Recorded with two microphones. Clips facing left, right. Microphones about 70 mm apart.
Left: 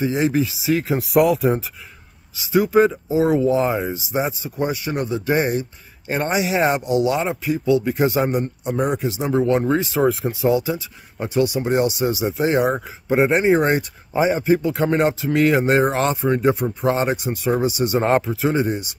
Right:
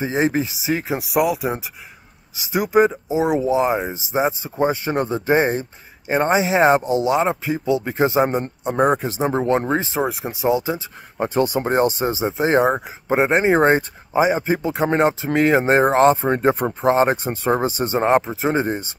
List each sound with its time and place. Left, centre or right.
0.0 s speech: right
0.9 s speech: centre
2.3 s speech: right
8.8 s speech: right
10.0 s speech: centre
11.1 s speech: right
12.7 s speech: right
16.8 s speech: right
18.0 s speech: right